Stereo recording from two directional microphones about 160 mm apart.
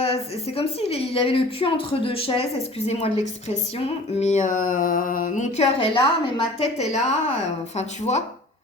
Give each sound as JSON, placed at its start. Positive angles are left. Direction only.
{"t": 0.0, "sound": "a woman's voice", "side_deg": 40}
{"t": 4.2, "sound": "speech", "side_deg": 50}
{"t": 6.7, "sound": "speech", "side_deg": 45}